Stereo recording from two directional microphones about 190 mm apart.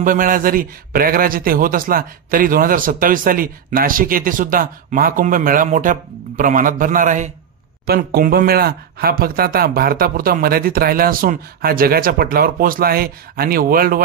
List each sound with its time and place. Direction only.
0.0 s a man's voice: 45° right (ahead or behind)
7.8 s a man's voice: 55° right (ahead or behind)